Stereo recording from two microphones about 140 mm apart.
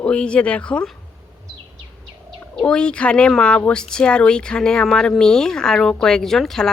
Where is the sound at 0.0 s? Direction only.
5° left (ahead or behind).